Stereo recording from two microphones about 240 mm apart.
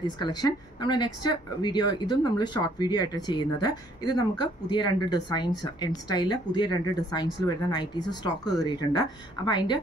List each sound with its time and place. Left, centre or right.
0.2 s a woman's voice: centre